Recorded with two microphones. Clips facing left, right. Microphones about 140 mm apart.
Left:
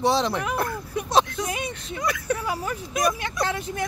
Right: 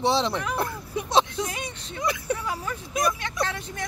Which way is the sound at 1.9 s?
25° right (ahead or behind).